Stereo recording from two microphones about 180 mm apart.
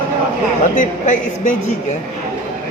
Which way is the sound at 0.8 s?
45° left (ahead or behind).